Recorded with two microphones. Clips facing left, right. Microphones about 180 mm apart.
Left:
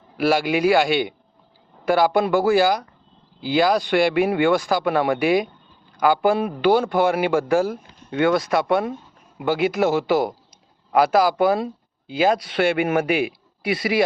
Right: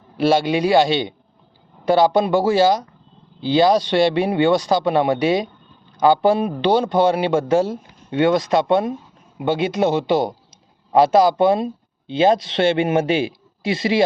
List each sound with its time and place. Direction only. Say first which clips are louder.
0.2 s a man's voice: right 2 dB; 25° right (ahead or behind)